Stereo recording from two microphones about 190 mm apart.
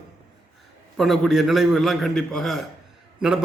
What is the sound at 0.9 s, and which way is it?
A man's voice, centre (ahead or behind).